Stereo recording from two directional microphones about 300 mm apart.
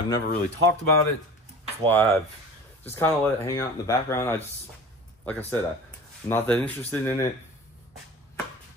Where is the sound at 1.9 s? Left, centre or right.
Centre.